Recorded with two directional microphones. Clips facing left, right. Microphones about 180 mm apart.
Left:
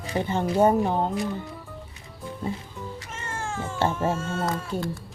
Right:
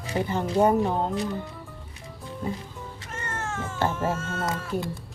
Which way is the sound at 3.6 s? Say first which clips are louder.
Left 2 dB; 30° left (ahead or behind).